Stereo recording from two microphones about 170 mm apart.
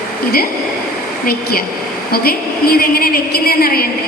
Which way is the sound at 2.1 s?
65° left (ahead or behind).